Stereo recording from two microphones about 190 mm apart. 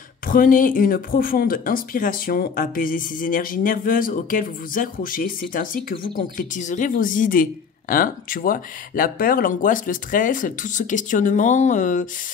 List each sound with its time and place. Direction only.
0.3 s speech: 45° left (ahead or behind)